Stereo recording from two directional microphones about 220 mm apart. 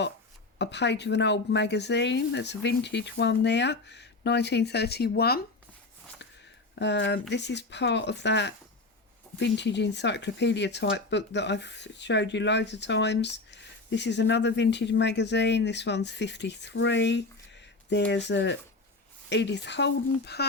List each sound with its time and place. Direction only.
0.6 s speech: 50° left (ahead or behind)
6.7 s speech: 50° left (ahead or behind)